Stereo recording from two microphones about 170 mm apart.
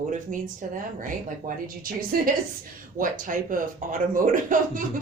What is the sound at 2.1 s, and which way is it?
Chuckle, 60° right (ahead or behind).